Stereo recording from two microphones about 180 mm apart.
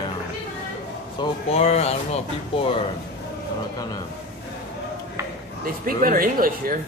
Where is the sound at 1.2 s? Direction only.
35° left (ahead or behind).